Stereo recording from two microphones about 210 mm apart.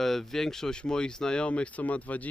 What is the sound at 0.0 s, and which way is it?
Speech, centre (ahead or behind).